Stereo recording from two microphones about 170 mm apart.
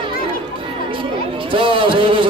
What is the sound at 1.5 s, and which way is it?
Speech, 30° right (ahead or behind).